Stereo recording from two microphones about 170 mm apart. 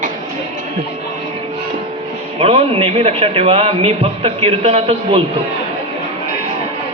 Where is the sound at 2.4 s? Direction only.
35° right (ahead or behind).